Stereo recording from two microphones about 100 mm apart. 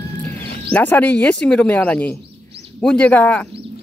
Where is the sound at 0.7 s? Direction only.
15° left (ahead or behind).